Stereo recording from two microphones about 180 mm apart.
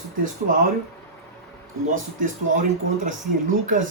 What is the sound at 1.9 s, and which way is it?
Speech, 45° right (ahead or behind).